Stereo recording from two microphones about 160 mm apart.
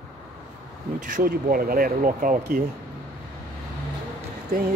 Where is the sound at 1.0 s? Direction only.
55° right (ahead or behind).